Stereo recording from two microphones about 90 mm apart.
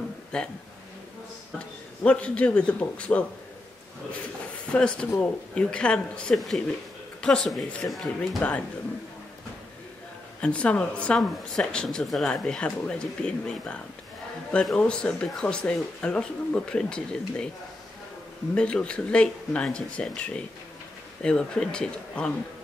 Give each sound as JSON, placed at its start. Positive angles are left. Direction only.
{"t": 0.3, "sound": "speech", "side_deg": 10}
{"t": 2.0, "sound": "speech", "side_deg": 15}
{"t": 4.7, "sound": "speech", "side_deg": 10}
{"t": 8.4, "sound": "speech", "side_deg": 15}
{"t": 10.4, "sound": "speech", "side_deg": 15}
{"t": 18.5, "sound": "speech", "side_deg": 10}